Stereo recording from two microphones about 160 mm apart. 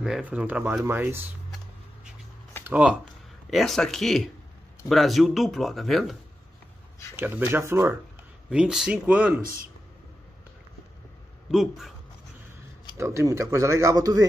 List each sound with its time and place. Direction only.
0.0 s speech: 5° right (ahead or behind)
2.6 s speech: 10° right (ahead or behind)
7.2 s speech: 15° right (ahead or behind)
8.5 s speech: 5° right (ahead or behind)
11.5 s speech: centre (ahead or behind)
12.9 s speech: 15° right (ahead or behind)